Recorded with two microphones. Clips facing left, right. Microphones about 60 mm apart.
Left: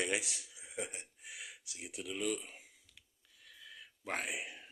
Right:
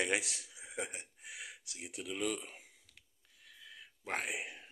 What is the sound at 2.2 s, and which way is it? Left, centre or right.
Speech, right.